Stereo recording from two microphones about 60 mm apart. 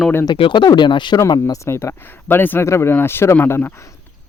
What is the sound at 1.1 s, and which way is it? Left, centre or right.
Speech, left.